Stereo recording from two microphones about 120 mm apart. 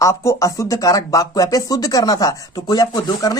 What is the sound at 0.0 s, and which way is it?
Speech, 25° left (ahead or behind).